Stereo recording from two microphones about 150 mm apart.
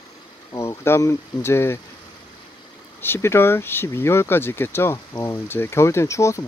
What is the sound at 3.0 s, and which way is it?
Speech, 15° left (ahead or behind).